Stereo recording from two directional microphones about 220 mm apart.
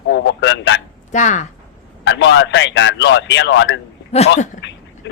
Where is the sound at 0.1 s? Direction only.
55° left (ahead or behind).